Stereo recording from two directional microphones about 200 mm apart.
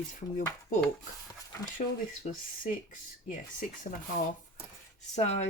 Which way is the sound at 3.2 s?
40° left (ahead or behind).